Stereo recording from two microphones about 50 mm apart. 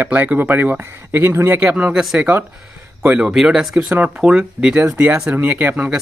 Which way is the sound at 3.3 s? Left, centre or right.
Centre.